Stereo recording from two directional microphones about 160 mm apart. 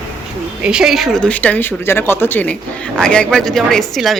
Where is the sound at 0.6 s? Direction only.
5° right (ahead or behind).